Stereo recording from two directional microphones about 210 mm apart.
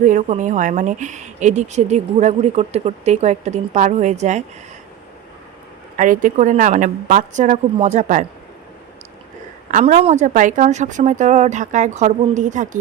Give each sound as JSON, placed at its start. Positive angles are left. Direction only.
{"t": 0.0, "sound": "a woman's voice", "side_deg": -35}
{"t": 6.0, "sound": "a woman's voice", "side_deg": -40}
{"t": 9.7, "sound": "a woman's voice", "side_deg": -30}